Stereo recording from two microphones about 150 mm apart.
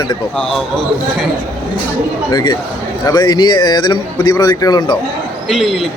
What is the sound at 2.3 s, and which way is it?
A man's voice, 30° left (ahead or behind).